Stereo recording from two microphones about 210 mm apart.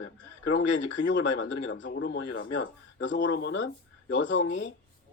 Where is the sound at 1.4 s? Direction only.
65° left (ahead or behind).